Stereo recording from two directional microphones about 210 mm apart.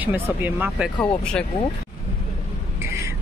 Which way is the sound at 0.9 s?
5° left (ahead or behind).